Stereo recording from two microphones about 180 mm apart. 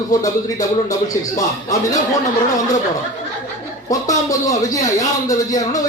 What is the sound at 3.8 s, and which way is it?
Speech, 20° left (ahead or behind).